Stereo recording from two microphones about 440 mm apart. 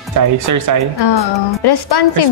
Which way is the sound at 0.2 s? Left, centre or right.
Right.